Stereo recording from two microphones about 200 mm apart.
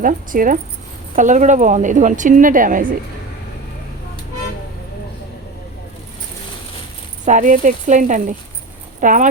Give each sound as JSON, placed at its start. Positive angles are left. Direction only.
{"t": 0.0, "sound": "speech", "side_deg": -45}
{"t": 7.3, "sound": "speech", "side_deg": -40}